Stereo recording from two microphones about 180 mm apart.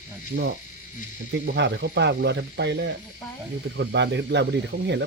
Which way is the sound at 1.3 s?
75° right (ahead or behind).